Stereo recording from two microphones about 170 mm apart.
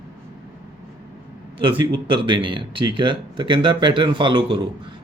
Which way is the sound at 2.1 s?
30° right (ahead or behind).